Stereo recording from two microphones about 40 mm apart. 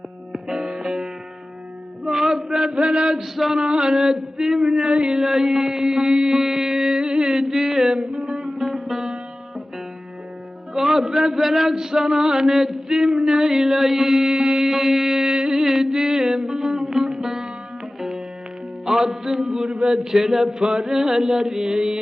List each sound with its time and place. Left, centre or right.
0.3 s music: centre
2.0 s a sound: centre
3.3 s male singing: centre
7.9 s music: right; by 9.0 s centre
10.8 s male singing: centre
18.9 s mantra: centre